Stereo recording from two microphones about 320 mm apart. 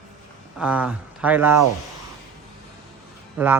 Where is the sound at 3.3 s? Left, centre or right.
Centre.